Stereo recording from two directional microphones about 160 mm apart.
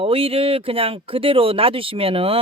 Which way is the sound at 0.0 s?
35° right (ahead or behind).